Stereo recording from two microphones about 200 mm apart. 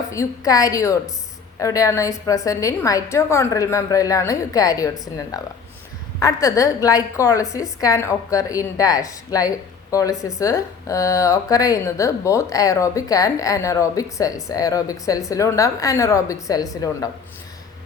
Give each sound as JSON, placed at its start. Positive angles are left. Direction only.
{"t": 0.1, "sound": "speech", "side_deg": 15}